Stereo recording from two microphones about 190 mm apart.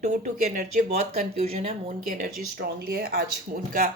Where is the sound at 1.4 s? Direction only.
30° right (ahead or behind).